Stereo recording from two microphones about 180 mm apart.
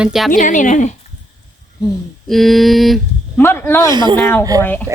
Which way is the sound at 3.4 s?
10° left (ahead or behind).